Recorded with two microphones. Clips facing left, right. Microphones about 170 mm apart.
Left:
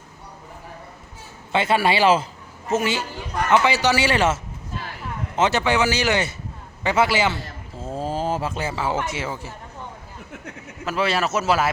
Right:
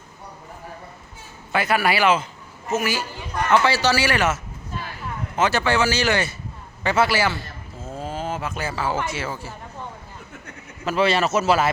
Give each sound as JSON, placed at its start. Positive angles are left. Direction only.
{"t": 1.5, "sound": "a man's voice", "side_deg": 25}
{"t": 5.4, "sound": "speech", "side_deg": 20}
{"t": 7.8, "sound": "a sound", "side_deg": 35}
{"t": 9.0, "sound": "speech", "side_deg": 20}
{"t": 10.8, "sound": "speech", "side_deg": 5}